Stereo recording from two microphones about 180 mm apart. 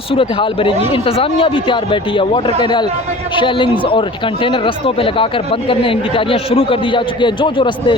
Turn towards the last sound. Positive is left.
turn(degrees=25)  # may be behind; listen again after turning